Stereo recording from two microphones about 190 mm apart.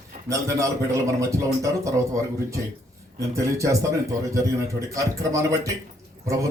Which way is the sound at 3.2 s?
15° right (ahead or behind).